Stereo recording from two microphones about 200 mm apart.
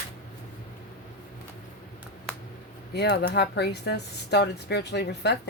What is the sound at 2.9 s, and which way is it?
Speech, 55° left (ahead or behind).